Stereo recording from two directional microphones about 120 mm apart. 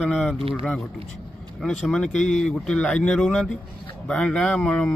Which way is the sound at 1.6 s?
5° left (ahead or behind).